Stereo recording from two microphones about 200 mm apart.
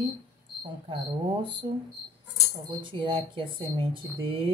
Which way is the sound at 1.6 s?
20° right (ahead or behind).